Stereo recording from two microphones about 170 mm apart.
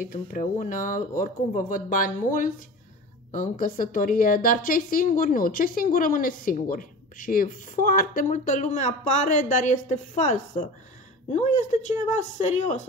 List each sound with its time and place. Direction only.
0.1 s speech: 50° left (ahead or behind)